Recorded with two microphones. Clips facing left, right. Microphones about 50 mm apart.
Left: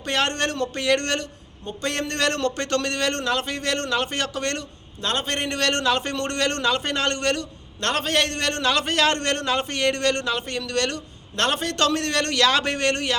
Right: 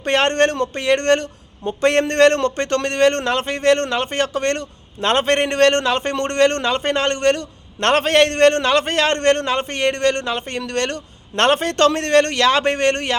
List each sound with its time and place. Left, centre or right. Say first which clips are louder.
0.0 s a man's voice: right 7 dB; right
1.2 s a man's voice: right 8 dB; right
4.9 s a man's voice: right 9 dB; right
7.8 s a man's voice: right 8 dB; right